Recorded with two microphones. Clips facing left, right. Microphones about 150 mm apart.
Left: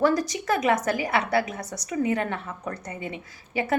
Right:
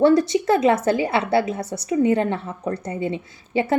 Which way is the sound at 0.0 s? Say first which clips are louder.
Right 7 dB; 25° right (ahead or behind).